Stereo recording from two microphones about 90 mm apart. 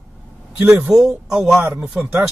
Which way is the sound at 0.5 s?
25° right (ahead or behind).